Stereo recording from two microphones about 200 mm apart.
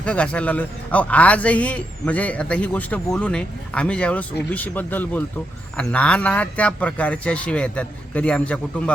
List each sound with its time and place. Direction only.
0.0 s a man's voice: 5° left (ahead or behind)